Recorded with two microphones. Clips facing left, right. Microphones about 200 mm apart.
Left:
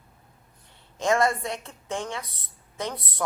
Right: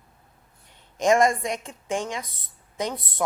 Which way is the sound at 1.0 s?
15° right (ahead or behind).